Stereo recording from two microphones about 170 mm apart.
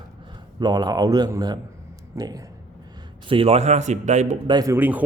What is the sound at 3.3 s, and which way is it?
A man's voice, 35° right (ahead or behind).